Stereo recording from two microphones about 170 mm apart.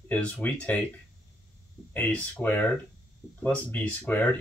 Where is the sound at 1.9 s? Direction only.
10° left (ahead or behind).